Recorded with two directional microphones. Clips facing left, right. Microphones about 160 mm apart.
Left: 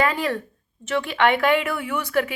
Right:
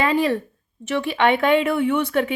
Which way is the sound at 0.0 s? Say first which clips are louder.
Right 3 dB; 20° right (ahead or behind).